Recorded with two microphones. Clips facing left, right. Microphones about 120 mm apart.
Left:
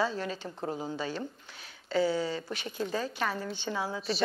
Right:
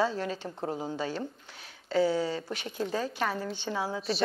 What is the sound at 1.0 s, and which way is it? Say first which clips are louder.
Speech: right 2 dB; 35° right (ahead or behind).